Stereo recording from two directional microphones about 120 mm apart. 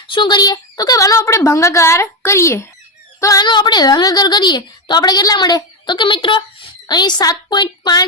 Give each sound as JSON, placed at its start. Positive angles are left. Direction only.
{"t": 0.1, "sound": "a woman's voice", "side_deg": 40}
{"t": 3.4, "sound": "a woman's voice", "side_deg": 40}